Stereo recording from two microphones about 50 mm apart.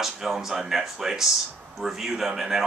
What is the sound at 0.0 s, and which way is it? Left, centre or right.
Speech, centre.